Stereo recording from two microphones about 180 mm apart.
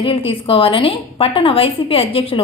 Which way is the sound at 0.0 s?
30° left (ahead or behind).